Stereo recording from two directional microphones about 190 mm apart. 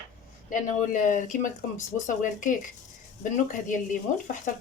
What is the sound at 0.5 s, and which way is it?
Speech, 40° left (ahead or behind).